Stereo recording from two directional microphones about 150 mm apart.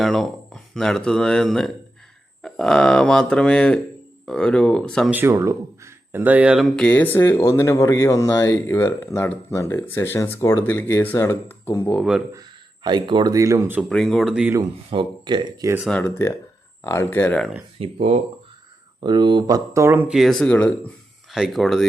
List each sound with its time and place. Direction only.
0.0 s speech: 5° left (ahead or behind)
5.1 s speech: 15° right (ahead or behind); by 11.9 s 15° left (ahead or behind)
11.9 s speech: 5° right (ahead or behind)
12.3 s speech: 30° right (ahead or behind)
13.9 s speech: centre (ahead or behind)
14.8 s speech: 30° right (ahead or behind)
15.9 s speech: 10° left (ahead or behind)
17.9 s speech: 50° right (ahead or behind)
18.9 s speech: 30° right (ahead or behind); by 20.1 s 15° right (ahead or behind)
20.1 s speech: centre (ahead or behind)
21.3 s speech: centre (ahead or behind)